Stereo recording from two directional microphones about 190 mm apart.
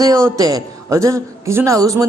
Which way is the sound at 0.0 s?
15° right (ahead or behind).